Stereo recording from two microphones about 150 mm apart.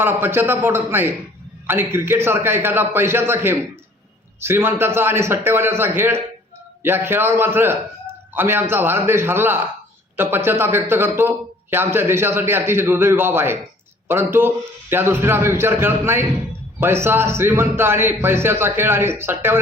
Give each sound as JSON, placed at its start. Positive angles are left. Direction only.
{"t": 0.0, "sound": "a man's voice", "side_deg": -15}